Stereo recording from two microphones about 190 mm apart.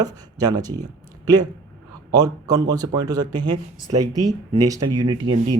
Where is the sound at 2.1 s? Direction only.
20° right (ahead or behind).